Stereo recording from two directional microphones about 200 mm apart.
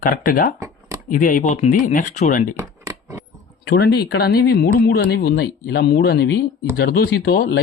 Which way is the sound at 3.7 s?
55° left (ahead or behind).